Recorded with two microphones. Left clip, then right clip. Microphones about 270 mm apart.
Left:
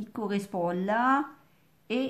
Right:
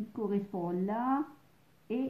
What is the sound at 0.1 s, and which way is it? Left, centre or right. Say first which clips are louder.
Speech: left 3 dB; left.